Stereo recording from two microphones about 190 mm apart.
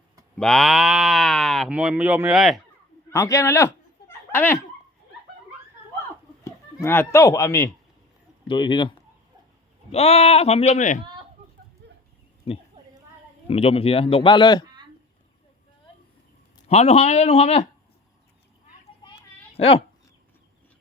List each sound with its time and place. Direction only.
0.3 s speech: 5° left (ahead or behind)
3.1 s a man's voice: 15° left (ahead or behind)
6.4 s speech: 15° left (ahead or behind)
9.9 s speech: 35° left (ahead or behind)
11.0 s chicken: 25° right (ahead or behind)
12.5 s speech: 30° left (ahead or behind)
16.6 s speech: 35° left (ahead or behind)
19.0 s a sound: 30° left (ahead or behind)